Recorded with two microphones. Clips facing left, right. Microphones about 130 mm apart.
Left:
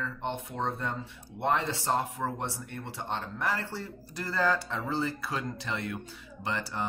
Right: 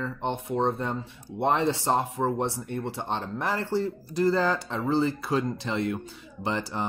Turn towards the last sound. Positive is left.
turn(degrees=-25)  # may be behind; listen again after turning